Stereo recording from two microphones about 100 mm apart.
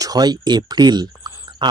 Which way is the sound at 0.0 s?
40° right (ahead or behind).